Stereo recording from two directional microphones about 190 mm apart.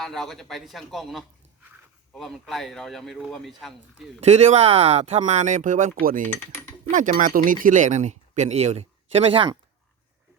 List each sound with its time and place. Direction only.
0.0 s speech: centre (ahead or behind)
4.2 s speech: 35° right (ahead or behind)
6.2 s speech: 10° left (ahead or behind)
6.9 s speech: 40° right (ahead or behind)